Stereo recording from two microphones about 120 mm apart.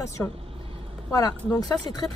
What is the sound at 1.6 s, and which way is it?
Speech, 30° left (ahead or behind).